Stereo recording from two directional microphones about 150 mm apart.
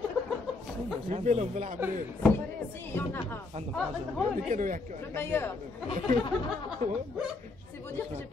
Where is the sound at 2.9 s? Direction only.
15° left (ahead or behind).